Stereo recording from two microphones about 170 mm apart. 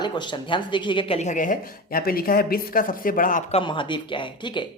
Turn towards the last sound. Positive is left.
turn(degrees=25)  # may be behind; listen again after turning